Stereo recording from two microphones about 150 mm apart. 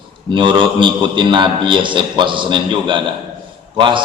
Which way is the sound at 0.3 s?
35° right (ahead or behind).